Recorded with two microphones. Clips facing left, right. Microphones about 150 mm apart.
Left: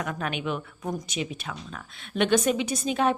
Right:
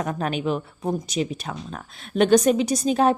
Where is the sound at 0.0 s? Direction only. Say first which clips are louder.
Right 5 dB; 35° right (ahead or behind).